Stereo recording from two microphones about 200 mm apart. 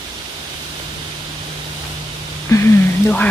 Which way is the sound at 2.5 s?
15° left (ahead or behind).